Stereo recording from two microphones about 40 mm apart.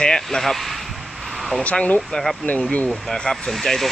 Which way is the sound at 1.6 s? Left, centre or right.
Left.